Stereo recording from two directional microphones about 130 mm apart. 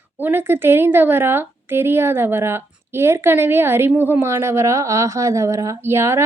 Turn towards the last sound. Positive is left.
turn(degrees=-20)  # may be behind; listen again after turning